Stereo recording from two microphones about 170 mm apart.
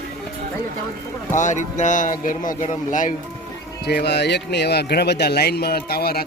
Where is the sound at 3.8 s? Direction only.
75° left (ahead or behind).